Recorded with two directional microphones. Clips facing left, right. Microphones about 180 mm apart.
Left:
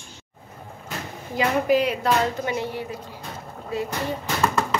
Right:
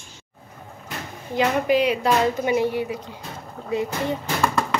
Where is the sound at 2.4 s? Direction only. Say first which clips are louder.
Right 6 dB; 15° right (ahead or behind).